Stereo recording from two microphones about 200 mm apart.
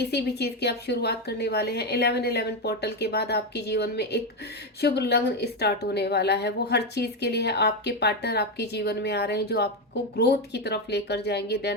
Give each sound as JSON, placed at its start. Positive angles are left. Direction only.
{"t": 0.0, "sound": "a woman's voice", "side_deg": 55}